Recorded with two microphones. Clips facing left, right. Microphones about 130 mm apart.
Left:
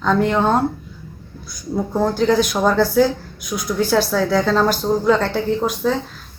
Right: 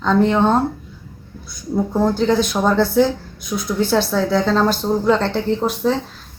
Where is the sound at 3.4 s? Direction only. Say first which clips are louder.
Right 2 dB; 25° right (ahead or behind).